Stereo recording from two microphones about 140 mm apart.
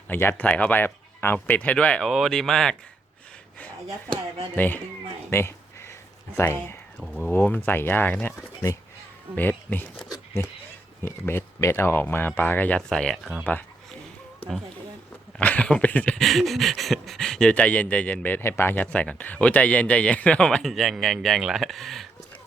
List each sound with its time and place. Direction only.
0.1 s speech: 15° left (ahead or behind)
4.5 s speech: 10° left (ahead or behind)
7.0 s speech: centre (ahead or behind)
7.3 s speech: 15° left (ahead or behind)
9.3 s speech: 10° left (ahead or behind)
15.4 s speech: 10° left (ahead or behind)